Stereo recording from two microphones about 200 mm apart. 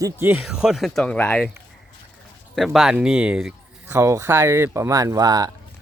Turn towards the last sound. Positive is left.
turn(degrees=-20)  # may be behind; listen again after turning